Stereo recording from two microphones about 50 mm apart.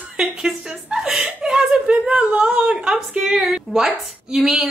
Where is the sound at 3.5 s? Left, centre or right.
Centre.